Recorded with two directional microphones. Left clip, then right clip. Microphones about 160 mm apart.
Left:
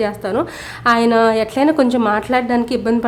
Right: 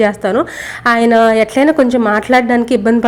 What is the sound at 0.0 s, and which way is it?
A woman's voice, 20° right (ahead or behind).